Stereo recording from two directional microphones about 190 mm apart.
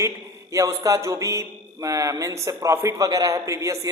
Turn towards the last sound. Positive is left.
turn(degrees=-15)  # may be behind; listen again after turning